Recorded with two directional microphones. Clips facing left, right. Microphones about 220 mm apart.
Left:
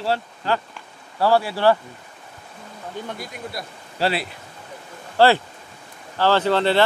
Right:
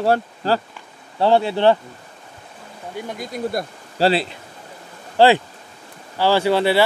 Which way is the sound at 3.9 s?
30° right (ahead or behind).